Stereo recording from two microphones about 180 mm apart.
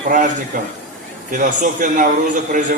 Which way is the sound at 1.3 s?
45° right (ahead or behind).